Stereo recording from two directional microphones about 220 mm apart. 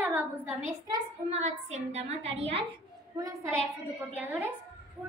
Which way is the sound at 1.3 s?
30° right (ahead or behind).